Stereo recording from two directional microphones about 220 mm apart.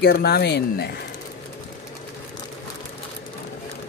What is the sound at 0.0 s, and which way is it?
Speech, 45° left (ahead or behind).